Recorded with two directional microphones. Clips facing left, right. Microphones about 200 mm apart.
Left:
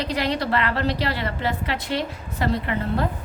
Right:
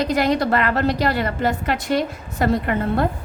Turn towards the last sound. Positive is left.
turn(degrees=-50)  # may be behind; listen again after turning